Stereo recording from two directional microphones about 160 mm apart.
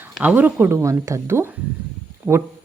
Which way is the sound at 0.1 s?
10° right (ahead or behind).